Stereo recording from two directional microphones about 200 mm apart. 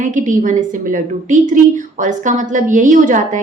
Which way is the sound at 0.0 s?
40° right (ahead or behind).